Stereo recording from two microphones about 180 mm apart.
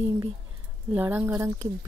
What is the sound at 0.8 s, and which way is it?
Speech, 10° right (ahead or behind).